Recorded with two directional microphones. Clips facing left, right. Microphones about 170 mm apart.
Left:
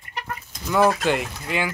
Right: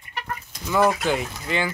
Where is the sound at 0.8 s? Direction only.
5° right (ahead or behind).